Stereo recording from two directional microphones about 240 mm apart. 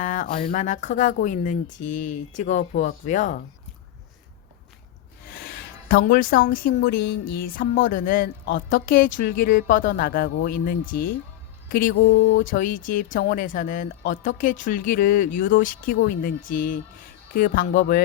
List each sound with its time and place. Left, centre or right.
0.0 s speech: left
6.1 s speech: left